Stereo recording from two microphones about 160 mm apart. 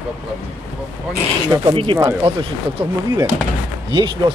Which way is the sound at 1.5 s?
30° right (ahead or behind).